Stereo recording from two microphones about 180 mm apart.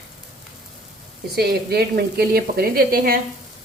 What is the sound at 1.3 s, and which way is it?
Speech, 60° right (ahead or behind).